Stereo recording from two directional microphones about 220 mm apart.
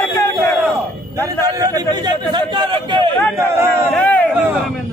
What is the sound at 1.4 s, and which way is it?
A man's voice, 15° right (ahead or behind).